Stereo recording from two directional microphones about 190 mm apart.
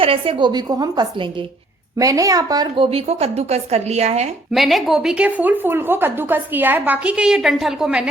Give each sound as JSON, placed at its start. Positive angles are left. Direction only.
{"t": 0.0, "sound": "a woman's voice", "side_deg": -30}
{"t": 4.5, "sound": "a woman's voice", "side_deg": 0}